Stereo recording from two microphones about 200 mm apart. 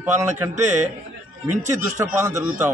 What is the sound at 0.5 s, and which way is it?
Speech, 35° right (ahead or behind).